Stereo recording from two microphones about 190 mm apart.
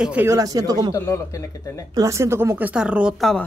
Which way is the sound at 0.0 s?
10° right (ahead or behind).